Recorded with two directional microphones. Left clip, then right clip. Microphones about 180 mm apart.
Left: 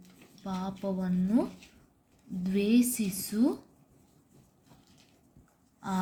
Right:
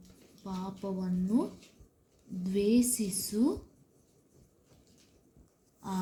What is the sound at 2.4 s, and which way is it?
A woman's voice, 20° left (ahead or behind).